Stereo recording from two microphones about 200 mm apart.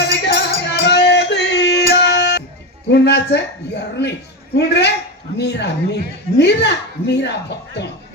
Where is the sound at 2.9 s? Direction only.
55° left (ahead or behind).